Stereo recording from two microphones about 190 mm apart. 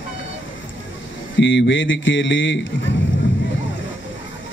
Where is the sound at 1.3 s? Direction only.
75° left (ahead or behind).